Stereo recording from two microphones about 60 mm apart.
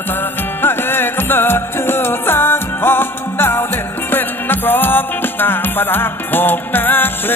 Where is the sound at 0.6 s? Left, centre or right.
Left.